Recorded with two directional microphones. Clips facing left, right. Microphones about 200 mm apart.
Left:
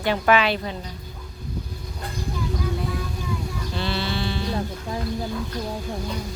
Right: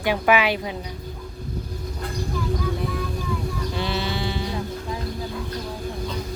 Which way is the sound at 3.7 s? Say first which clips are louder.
Left 1 dB; 15° right (ahead or behind).